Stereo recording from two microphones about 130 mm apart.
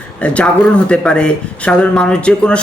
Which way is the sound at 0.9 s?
10° left (ahead or behind).